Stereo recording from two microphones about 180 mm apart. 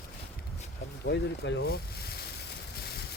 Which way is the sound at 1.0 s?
70° left (ahead or behind).